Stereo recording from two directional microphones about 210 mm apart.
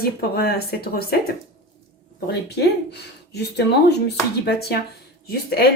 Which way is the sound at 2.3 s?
50° left (ahead or behind).